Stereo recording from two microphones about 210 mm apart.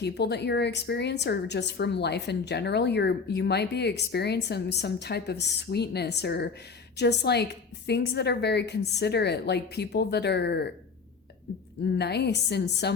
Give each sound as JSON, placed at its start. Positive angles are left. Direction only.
{"t": 0.0, "sound": "a woman's voice", "side_deg": 50}
{"t": 11.9, "sound": "a woman's voice", "side_deg": 50}